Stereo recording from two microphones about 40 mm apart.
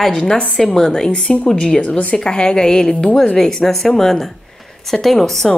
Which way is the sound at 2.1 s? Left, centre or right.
Left.